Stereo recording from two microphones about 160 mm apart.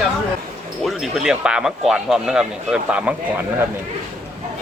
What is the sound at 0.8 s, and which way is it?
Speech, centre (ahead or behind).